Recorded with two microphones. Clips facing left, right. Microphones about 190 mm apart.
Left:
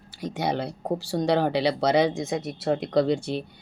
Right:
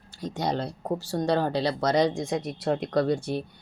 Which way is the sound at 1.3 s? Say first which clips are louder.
Left 2 dB; 70° left (ahead or behind).